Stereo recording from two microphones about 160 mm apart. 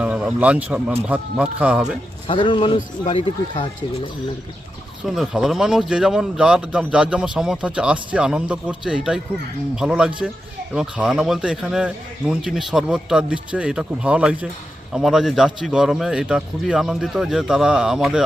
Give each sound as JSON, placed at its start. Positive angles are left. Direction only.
{"t": 0.0, "sound": "speech", "side_deg": -5}
{"t": 2.2, "sound": "speech", "side_deg": 30}
{"t": 5.0, "sound": "a man's voice", "side_deg": 0}